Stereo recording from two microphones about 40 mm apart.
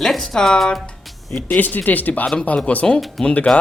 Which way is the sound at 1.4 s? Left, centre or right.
Left.